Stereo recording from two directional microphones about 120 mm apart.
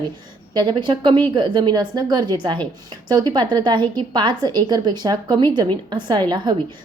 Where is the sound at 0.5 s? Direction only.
40° right (ahead or behind).